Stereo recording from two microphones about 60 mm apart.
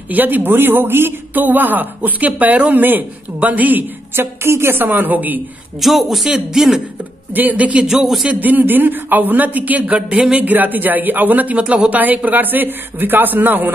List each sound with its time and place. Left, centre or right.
0.1 s speech: right
5.8 s speech: centre
7.3 s speech: right
7.8 s speech: centre
8.3 s speech: right
10.3 s speech: right